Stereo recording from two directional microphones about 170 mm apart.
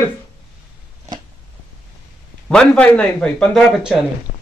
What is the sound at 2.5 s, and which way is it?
Speech, 5° left (ahead or behind).